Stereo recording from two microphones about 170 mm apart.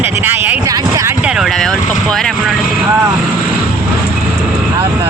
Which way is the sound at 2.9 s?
20° right (ahead or behind).